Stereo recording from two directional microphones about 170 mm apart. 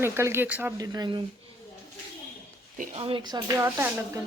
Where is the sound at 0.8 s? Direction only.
25° right (ahead or behind).